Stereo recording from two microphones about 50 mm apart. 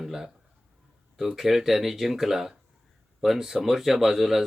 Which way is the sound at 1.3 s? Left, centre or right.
Centre.